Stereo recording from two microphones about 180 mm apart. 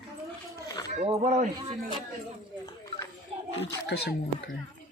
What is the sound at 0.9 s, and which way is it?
Speech, 40° right (ahead or behind).